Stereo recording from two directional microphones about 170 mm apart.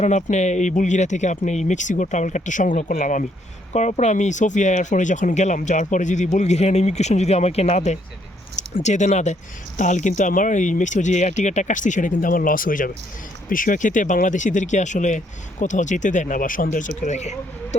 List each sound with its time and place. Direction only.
0.0 s speech: 45° left (ahead or behind)